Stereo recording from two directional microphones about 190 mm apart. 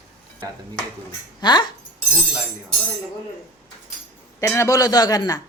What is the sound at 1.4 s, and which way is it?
Speech, 20° left (ahead or behind).